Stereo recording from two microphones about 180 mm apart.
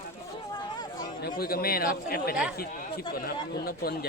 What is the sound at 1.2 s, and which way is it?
Speech, 55° left (ahead or behind).